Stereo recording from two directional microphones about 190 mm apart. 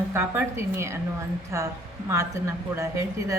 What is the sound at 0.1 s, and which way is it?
A woman's voice, 15° right (ahead or behind).